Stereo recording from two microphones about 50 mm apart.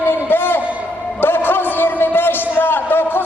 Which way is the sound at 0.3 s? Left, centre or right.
Left.